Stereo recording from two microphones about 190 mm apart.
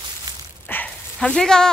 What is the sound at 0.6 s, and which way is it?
Dog, 10° left (ahead or behind).